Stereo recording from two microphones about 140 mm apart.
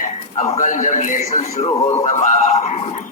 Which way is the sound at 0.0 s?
50° left (ahead or behind).